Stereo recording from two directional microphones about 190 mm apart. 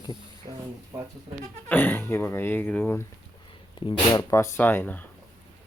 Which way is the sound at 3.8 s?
25° left (ahead or behind).